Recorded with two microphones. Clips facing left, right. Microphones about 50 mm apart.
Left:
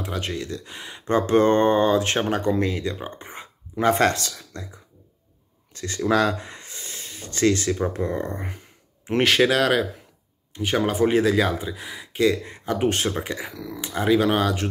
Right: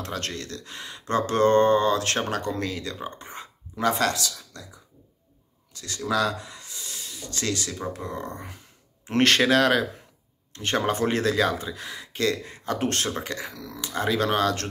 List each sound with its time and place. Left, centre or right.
0.0 s speech: centre
3.9 s speech: left
9.0 s speech: centre